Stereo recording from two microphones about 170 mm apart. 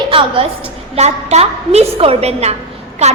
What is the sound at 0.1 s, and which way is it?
A woman's voice, 30° right (ahead or behind).